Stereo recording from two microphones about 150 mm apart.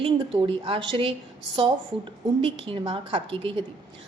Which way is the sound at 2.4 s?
35° right (ahead or behind).